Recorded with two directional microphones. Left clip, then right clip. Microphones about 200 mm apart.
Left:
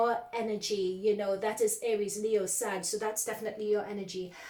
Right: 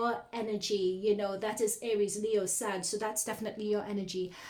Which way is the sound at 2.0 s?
45° right (ahead or behind).